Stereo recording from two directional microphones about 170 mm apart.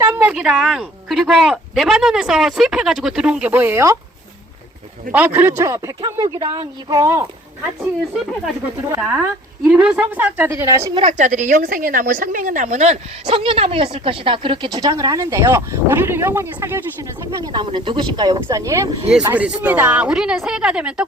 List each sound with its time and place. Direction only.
0.1 s speech: 10° right (ahead or behind)
5.1 s speech: 10° right (ahead or behind)
9.0 s speech: 10° right (ahead or behind)
10.9 s speech: 45° right (ahead or behind); by 16.8 s 15° right (ahead or behind)
17.4 s speech: 25° right (ahead or behind); by 21.0 s 5° right (ahead or behind)